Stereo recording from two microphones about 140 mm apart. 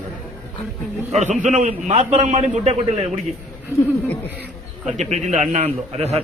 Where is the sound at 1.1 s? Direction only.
55° right (ahead or behind).